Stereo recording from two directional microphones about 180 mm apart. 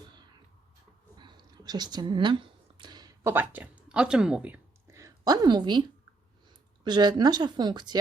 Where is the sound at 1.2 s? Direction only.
25° right (ahead or behind).